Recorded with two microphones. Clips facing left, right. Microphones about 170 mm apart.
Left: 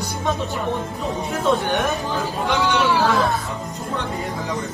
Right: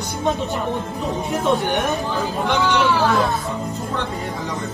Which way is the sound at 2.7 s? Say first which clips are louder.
Even; centre (ahead or behind).